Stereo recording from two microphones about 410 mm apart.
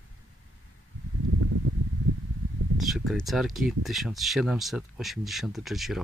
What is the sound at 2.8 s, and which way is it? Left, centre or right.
Speech, centre.